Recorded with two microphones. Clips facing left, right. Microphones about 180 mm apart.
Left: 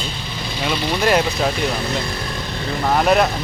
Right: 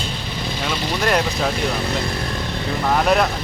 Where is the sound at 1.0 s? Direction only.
5° left (ahead or behind).